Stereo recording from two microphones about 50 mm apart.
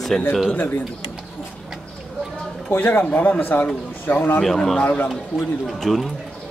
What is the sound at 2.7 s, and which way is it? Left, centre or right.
Speech, left.